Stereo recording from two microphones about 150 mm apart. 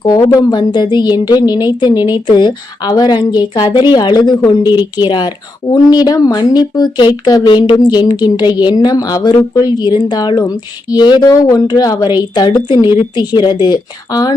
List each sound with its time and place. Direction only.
0.3 s a woman's voice: 25° left (ahead or behind)